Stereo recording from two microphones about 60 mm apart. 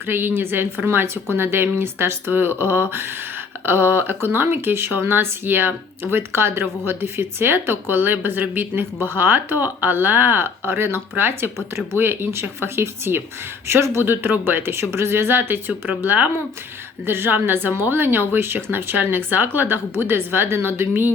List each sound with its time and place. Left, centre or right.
0.1 s speech: right